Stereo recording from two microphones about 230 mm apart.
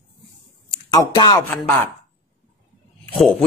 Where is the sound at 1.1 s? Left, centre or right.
Centre.